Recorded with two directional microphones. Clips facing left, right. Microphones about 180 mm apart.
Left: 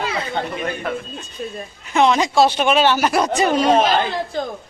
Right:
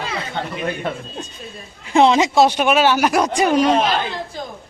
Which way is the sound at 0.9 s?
25° right (ahead or behind).